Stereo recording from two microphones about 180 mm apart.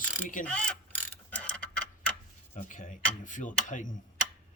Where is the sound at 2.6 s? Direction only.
45° left (ahead or behind).